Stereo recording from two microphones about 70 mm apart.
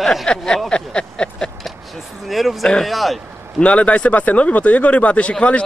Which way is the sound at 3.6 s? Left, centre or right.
Centre.